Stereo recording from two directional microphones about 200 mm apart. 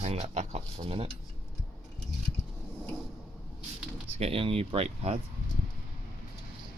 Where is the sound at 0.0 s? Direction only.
35° right (ahead or behind).